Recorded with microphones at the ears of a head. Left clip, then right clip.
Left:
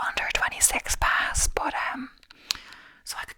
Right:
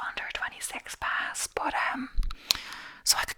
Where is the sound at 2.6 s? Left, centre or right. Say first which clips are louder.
Right 8 dB; right.